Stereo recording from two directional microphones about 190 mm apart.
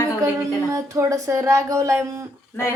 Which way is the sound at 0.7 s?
15° right (ahead or behind).